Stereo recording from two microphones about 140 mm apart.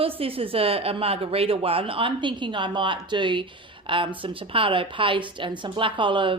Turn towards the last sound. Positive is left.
turn(degrees=-35)  # may be behind; listen again after turning